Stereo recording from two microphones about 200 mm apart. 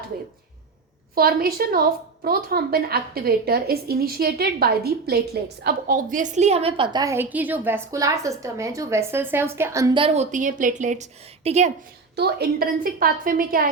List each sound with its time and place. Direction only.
1.1 s a woman's voice: 45° right (ahead or behind); by 10.2 s 25° right (ahead or behind)
10.3 s a woman's voice: 40° right (ahead or behind)
12.1 s a woman's voice: 55° right (ahead or behind)